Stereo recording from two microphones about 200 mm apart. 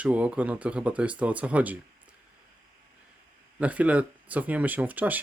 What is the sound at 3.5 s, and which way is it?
Speech, 5° right (ahead or behind).